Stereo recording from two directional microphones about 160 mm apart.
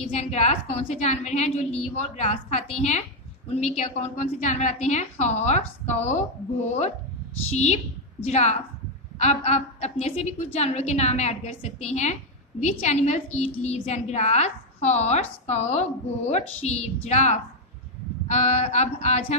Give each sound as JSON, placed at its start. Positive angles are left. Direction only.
{"t": 0.2, "sound": "a woman's voice", "side_deg": 45}
{"t": 7.4, "sound": "a woman's voice", "side_deg": 45}